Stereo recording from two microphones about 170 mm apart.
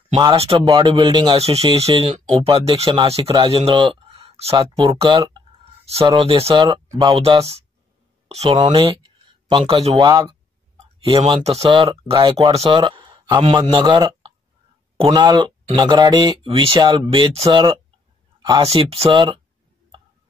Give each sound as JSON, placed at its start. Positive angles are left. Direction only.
{"t": 0.1, "sound": "speech", "side_deg": -30}
{"t": 7.2, "sound": "speech", "side_deg": -35}
{"t": 9.9, "sound": "speech", "side_deg": -20}
{"t": 11.1, "sound": "speech", "side_deg": -30}
{"t": 18.7, "sound": "speech", "side_deg": -35}